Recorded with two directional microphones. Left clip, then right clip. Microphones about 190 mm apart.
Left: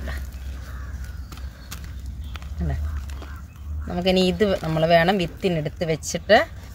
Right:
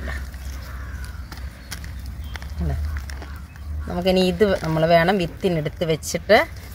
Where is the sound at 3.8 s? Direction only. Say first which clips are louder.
Right 1 dB; 5° left (ahead or behind).